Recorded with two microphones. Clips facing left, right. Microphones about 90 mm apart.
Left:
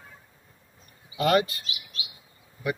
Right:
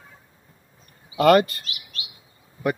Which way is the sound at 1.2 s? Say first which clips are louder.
Right 7 dB; 55° right (ahead or behind).